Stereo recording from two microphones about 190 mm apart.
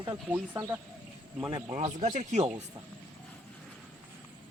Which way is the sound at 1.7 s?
25° right (ahead or behind).